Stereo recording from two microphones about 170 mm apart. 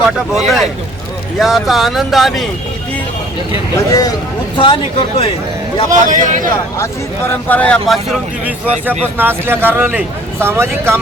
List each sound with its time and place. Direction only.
0.3 s speech: centre (ahead or behind)
3.8 s speech: 20° left (ahead or behind)
5.9 s a man's voice: 50° right (ahead or behind)
7.3 s speech: 10° left (ahead or behind)
9.1 s speech: 10° right (ahead or behind)